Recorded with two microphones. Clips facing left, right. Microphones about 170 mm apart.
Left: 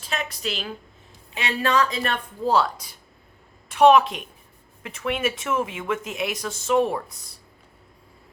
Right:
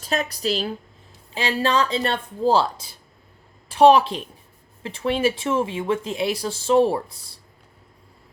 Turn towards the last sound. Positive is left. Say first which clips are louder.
# right 3 dB
turn(degrees=-30)  # may be behind; listen again after turning